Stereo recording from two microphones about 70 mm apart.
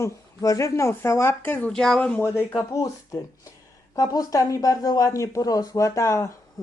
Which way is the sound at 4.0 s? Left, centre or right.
Left.